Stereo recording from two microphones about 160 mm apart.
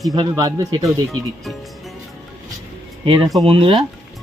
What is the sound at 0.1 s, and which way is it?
Speech, 25° right (ahead or behind).